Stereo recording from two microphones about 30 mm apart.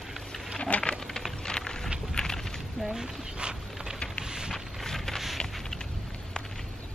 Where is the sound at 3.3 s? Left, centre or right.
Right.